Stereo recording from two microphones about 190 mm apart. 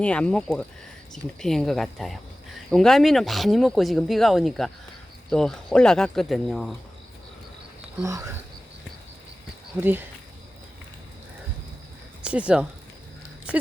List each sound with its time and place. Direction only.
0.0 s speech: 5° left (ahead or behind)
8.0 s speech: 15° right (ahead or behind)
12.2 s speech: 5° right (ahead or behind)
13.5 s a sound: 5° right (ahead or behind)